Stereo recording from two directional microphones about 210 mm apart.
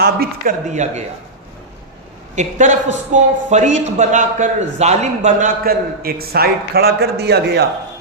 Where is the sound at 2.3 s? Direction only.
35° right (ahead or behind); by 7.6 s 50° right (ahead or behind).